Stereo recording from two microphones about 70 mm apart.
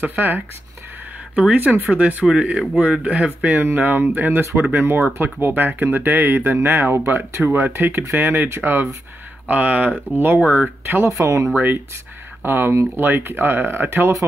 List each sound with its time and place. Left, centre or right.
0.0 s speech: right
3.3 s speech: centre
3.5 s speech: right
4.3 s speech: right
9.5 s speech: right
11.0 s speech: right
11.5 s speech: right